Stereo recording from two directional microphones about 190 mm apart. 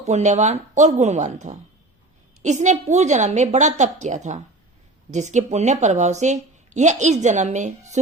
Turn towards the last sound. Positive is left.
turn(degrees=-40)  # may be behind; listen again after turning